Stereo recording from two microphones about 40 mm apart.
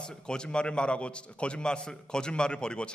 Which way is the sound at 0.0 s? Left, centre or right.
Centre.